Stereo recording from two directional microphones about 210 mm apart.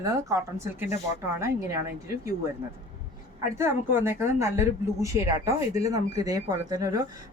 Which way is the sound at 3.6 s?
10° right (ahead or behind).